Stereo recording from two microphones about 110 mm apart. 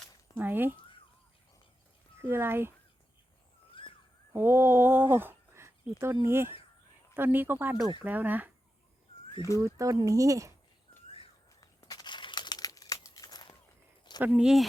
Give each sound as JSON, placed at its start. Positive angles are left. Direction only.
{"t": 0.3, "sound": "speech", "side_deg": -20}
{"t": 2.2, "sound": "speech", "side_deg": -20}
{"t": 3.8, "sound": "a sound", "side_deg": 50}
{"t": 4.4, "sound": "speech", "side_deg": -20}
{"t": 9.6, "sound": "speech", "side_deg": -30}
{"t": 11.9, "sound": "crumpling", "side_deg": 40}
{"t": 14.2, "sound": "speech", "side_deg": -10}